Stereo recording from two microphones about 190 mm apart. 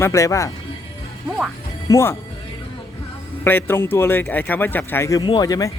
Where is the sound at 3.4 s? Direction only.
10° left (ahead or behind).